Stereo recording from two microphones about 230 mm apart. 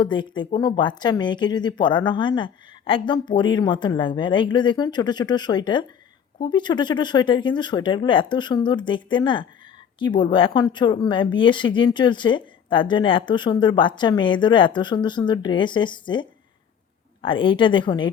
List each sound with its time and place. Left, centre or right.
0.0 s speech: centre